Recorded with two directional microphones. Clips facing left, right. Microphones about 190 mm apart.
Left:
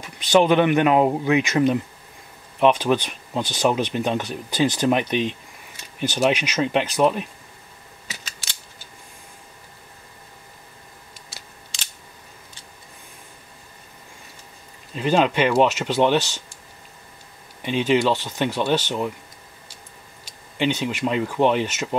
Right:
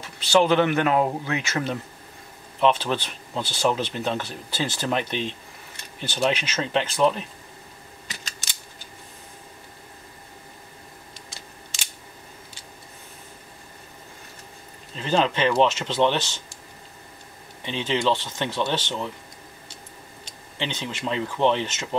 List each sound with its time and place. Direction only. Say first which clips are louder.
0.0 s speech: left 3 dB; 15° left (ahead or behind)
15.0 s speech: left 3 dB; 15° left (ahead or behind)
17.6 s speech: left 5 dB; 10° left (ahead or behind)
20.2 s speech: left 9 dB; 15° left (ahead or behind)